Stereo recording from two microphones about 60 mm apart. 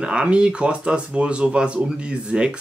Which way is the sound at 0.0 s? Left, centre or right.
Centre.